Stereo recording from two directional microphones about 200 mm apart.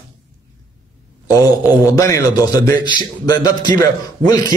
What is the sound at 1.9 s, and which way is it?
A man's voice, 15° left (ahead or behind).